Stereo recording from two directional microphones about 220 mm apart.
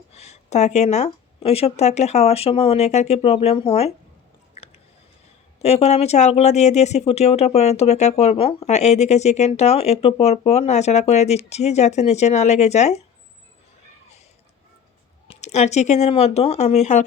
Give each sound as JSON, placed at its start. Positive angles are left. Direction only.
{"t": 0.1, "sound": "speech", "side_deg": 30}
{"t": 4.5, "sound": "chewing", "side_deg": 25}
{"t": 5.6, "sound": "speech", "side_deg": 30}
{"t": 15.3, "sound": "speech", "side_deg": 30}